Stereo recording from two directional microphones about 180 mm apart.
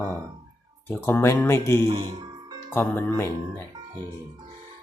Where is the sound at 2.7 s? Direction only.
10° left (ahead or behind).